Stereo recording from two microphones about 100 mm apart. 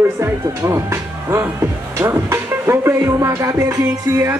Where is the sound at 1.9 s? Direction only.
25° right (ahead or behind).